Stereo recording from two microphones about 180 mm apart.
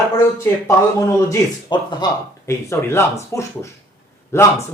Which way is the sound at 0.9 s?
15° left (ahead or behind).